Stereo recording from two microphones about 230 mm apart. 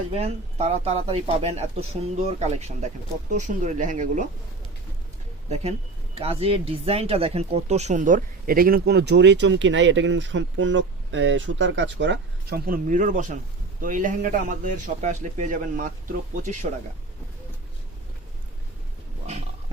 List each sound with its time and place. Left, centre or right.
0.1 s a man's voice: right
6.1 s a man's voice: right